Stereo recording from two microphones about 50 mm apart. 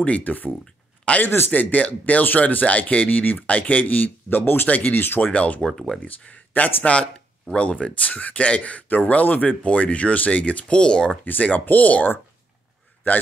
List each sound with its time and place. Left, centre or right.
0.0 s speech: left
1.1 s speech: left
5.3 s speech: left
5.7 s speech: centre
6.0 s speech: left
11.4 s speech: left